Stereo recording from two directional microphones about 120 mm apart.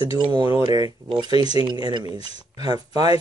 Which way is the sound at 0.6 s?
35° right (ahead or behind).